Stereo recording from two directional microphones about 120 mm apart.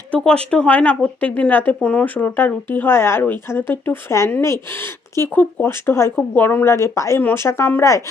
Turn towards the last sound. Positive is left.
turn(degrees=25)  # may be behind; listen again after turning